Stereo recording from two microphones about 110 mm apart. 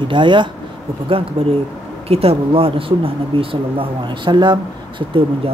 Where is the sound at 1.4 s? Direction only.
60° right (ahead or behind).